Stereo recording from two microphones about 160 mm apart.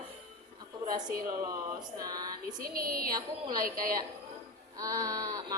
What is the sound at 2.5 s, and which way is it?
A woman's voice, 65° right (ahead or behind).